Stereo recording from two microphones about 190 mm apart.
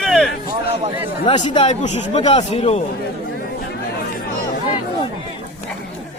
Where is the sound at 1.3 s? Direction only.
25° left (ahead or behind).